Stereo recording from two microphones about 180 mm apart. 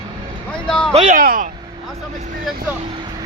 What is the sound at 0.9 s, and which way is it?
Speech, 40° right (ahead or behind).